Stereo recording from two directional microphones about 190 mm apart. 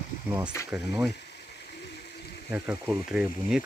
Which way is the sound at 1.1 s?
60° left (ahead or behind).